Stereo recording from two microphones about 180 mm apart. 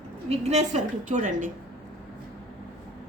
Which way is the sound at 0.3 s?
35° right (ahead or behind).